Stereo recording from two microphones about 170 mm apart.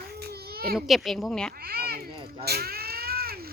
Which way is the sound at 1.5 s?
65° right (ahead or behind).